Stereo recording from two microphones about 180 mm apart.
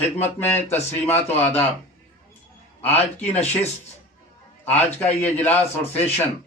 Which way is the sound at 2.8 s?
10° left (ahead or behind).